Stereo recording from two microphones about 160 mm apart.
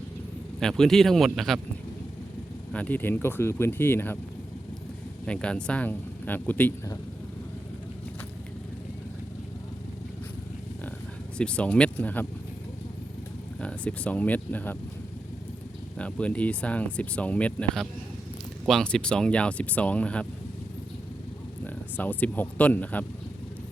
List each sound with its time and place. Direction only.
0.6 s speech: 5° left (ahead or behind)
2.7 s speech: 10° left (ahead or behind)
5.2 s speech: 5° left (ahead or behind)
11.3 s speech: 5° left (ahead or behind)
13.6 s speech: 5° left (ahead or behind)
16.0 s speech: 10° left (ahead or behind)
21.9 s speech: 10° left (ahead or behind)